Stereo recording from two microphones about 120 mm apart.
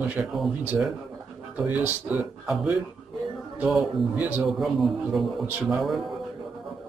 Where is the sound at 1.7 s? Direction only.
15° right (ahead or behind).